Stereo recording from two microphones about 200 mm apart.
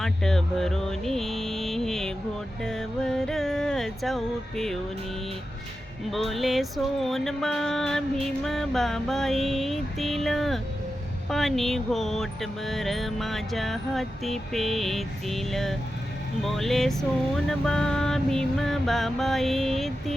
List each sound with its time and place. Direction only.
0.0 s mantra: centre (ahead or behind)
2.6 s music: centre (ahead or behind)
6.1 s music: centre (ahead or behind)